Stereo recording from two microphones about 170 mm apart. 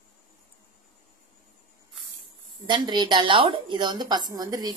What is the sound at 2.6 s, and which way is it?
A woman's voice, 25° right (ahead or behind).